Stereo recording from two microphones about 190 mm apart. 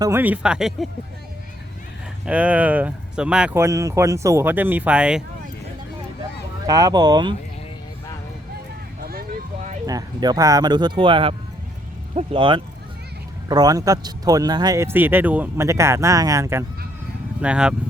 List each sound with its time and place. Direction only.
0.0 s speech: 10° right (ahead or behind)
2.2 s speech: 5° right (ahead or behind)
6.7 s speech: 20° right (ahead or behind)
9.0 s a sound: 55° right (ahead or behind)
9.8 s speech: 20° right (ahead or behind)